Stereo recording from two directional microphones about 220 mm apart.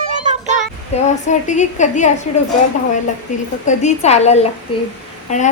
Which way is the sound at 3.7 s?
30° left (ahead or behind).